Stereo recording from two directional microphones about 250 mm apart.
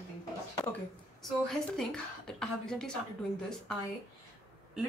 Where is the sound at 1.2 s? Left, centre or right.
Centre.